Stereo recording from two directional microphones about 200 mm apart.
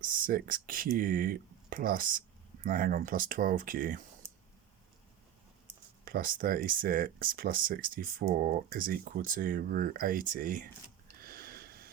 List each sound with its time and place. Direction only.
0.0 s speech: 45° right (ahead or behind)
6.1 s speech: 45° right (ahead or behind)
11.2 s a sound: 50° right (ahead or behind)